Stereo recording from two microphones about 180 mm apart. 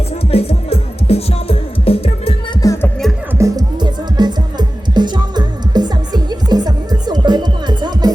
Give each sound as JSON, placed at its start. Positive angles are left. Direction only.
{"t": 0.3, "sound": "music", "side_deg": 35}
{"t": 2.6, "sound": "music", "side_deg": 20}
{"t": 3.3, "sound": "music", "side_deg": -20}